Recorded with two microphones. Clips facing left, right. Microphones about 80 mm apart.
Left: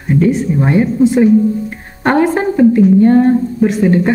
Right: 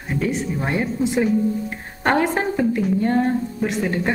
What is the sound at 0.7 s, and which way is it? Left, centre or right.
A woman's voice, centre.